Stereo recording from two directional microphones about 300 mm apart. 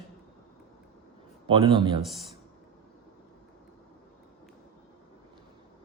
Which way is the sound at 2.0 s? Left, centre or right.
Centre.